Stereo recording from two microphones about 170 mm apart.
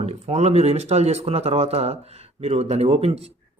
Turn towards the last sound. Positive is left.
turn(degrees=-35)  # may be behind; listen again after turning